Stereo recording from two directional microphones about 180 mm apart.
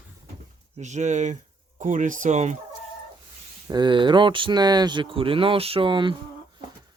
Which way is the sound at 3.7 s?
25° right (ahead or behind).